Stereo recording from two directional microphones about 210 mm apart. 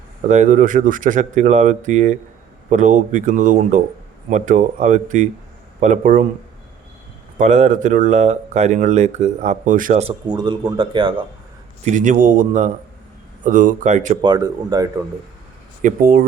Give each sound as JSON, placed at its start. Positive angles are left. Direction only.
{"t": 0.3, "sound": "speech", "side_deg": -35}
{"t": 7.3, "sound": "speech", "side_deg": -35}
{"t": 11.9, "sound": "speech", "side_deg": -35}
{"t": 14.2, "sound": "speech", "side_deg": -20}
{"t": 15.8, "sound": "speech", "side_deg": -40}